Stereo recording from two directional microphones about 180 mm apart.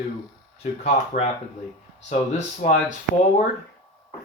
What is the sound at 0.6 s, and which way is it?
Speech, 40° left (ahead or behind).